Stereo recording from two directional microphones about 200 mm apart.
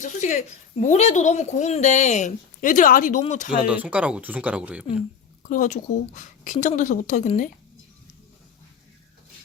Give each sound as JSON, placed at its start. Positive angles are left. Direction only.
{"t": 0.0, "sound": "a woman's voice", "side_deg": 35}
{"t": 3.7, "sound": "speech", "side_deg": -5}
{"t": 5.4, "sound": "a woman's voice", "side_deg": 40}